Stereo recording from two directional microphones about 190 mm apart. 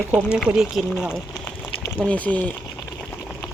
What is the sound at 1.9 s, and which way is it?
Speech, 5° left (ahead or behind).